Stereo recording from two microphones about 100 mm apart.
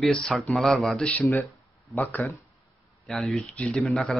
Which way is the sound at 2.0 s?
15° left (ahead or behind).